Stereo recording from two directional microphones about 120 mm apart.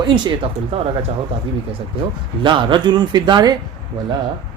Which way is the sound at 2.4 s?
40° right (ahead or behind).